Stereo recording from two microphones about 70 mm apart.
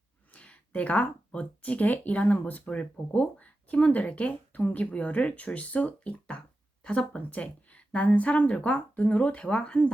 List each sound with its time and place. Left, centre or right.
0.3 s speech: centre